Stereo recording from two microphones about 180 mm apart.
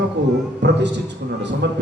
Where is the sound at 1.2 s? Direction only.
60° right (ahead or behind).